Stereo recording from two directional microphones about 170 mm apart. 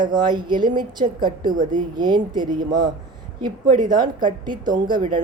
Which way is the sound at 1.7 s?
25° right (ahead or behind).